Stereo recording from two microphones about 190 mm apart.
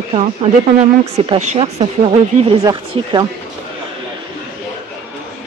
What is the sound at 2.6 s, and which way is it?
Speech, 20° right (ahead or behind).